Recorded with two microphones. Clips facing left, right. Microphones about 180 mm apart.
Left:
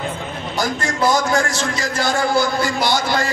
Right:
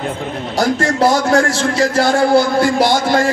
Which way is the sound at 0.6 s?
65° right (ahead or behind).